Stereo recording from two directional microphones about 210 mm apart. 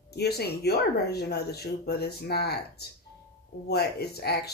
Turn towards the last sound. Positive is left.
turn(degrees=50)  # may be behind; listen again after turning